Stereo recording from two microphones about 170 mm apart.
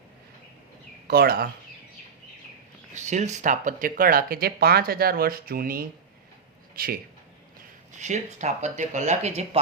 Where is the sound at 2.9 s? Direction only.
45° right (ahead or behind); by 6.9 s 60° right (ahead or behind).